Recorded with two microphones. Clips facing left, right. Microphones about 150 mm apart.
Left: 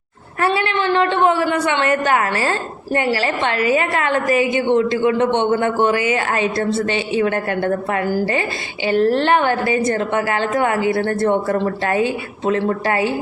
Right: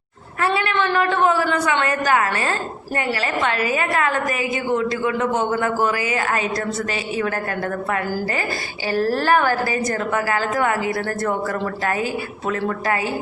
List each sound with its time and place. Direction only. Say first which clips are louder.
0.4 s a woman's voice: left 2 dB; 25° left (ahead or behind)